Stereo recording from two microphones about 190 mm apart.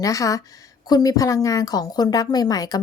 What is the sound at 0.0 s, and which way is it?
A woman's voice, 15° left (ahead or behind).